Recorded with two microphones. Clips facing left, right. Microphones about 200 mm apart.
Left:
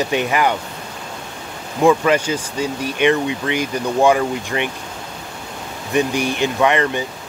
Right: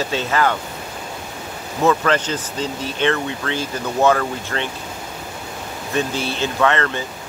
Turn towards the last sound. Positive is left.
turn(degrees=15)  # may be behind; listen again after turning